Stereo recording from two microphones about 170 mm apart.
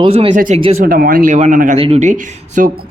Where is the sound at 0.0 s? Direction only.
35° right (ahead or behind).